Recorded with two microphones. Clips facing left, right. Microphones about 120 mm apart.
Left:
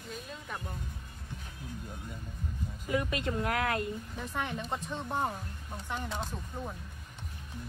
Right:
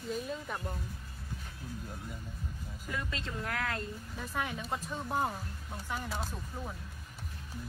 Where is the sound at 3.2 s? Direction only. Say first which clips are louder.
Left 6 dB; 65° left (ahead or behind).